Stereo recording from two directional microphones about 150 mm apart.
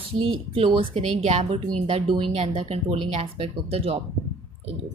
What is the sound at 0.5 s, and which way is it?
Speech, 40° right (ahead or behind).